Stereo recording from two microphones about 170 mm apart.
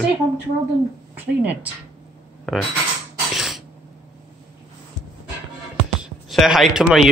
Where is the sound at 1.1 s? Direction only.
10° right (ahead or behind).